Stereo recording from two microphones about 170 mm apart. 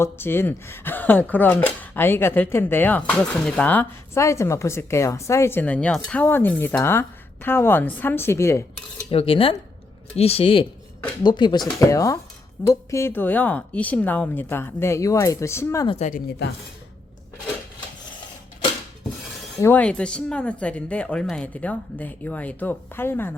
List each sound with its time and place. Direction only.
0.0 s speech: 15° left (ahead or behind)
9.0 s speech: 35° left (ahead or behind); by 15.9 s 15° left (ahead or behind)
16.0 s speech: 60° left (ahead or behind)
19.5 s speech: 10° left (ahead or behind)